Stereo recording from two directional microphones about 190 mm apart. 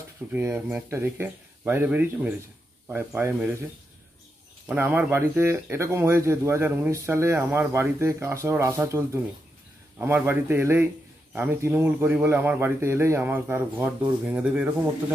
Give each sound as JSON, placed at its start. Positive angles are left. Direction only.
{"t": 0.3, "sound": "speech", "side_deg": -10}
{"t": 4.6, "sound": "speech", "side_deg": -10}